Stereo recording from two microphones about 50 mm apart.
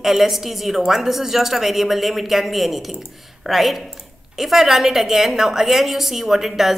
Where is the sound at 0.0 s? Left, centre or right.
Centre.